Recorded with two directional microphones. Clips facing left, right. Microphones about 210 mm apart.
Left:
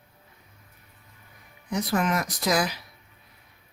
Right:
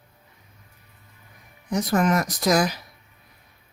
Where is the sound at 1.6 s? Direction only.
45° right (ahead or behind).